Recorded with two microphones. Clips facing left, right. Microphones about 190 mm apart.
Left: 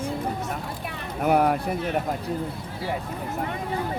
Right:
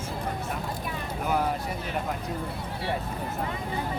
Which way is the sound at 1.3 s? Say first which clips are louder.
Left 7 dB; 60° left (ahead or behind).